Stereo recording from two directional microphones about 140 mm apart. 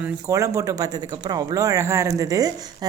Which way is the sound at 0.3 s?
20° right (ahead or behind).